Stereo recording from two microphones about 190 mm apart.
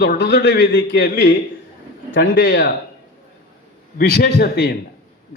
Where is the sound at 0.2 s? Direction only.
65° left (ahead or behind).